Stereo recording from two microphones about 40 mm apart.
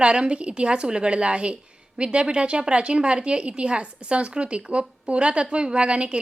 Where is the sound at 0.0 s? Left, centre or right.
Right.